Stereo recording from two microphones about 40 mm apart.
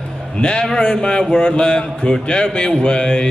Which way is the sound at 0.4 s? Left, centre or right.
Left.